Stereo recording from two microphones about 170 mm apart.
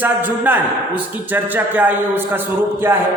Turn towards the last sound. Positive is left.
turn(degrees=-15)  # may be behind; listen again after turning